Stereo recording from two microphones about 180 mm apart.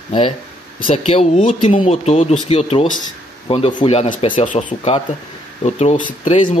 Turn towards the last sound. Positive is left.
turn(degrees=40)  # may be behind; listen again after turning